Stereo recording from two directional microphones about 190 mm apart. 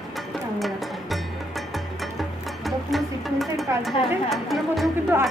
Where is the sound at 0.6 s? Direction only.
Centre (ahead or behind).